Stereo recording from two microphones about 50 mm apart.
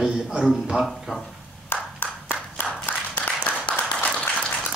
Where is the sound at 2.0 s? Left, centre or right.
Left.